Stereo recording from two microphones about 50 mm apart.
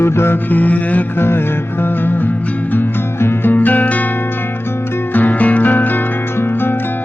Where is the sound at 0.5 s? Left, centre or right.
Left.